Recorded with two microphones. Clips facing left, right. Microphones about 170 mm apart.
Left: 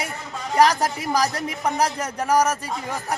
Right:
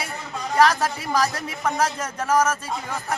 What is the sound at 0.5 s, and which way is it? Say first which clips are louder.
A man's voice: left 1 dB; 15° left (ahead or behind).